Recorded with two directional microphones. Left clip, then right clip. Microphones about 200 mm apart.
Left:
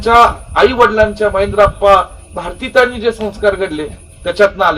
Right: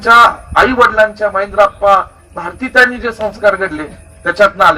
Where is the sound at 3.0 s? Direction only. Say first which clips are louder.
Right 1 dB; 25° left (ahead or behind).